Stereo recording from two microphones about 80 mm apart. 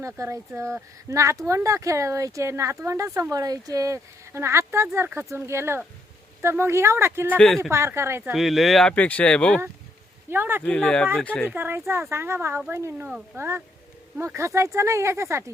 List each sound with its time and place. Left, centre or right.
0.0 s speech: right
4.3 s speech: right
7.3 s speech: centre
7.7 s speech: right
8.3 s speech: centre
8.9 s speech: centre
10.2 s speech: right
10.6 s speech: centre
11.4 s speech: right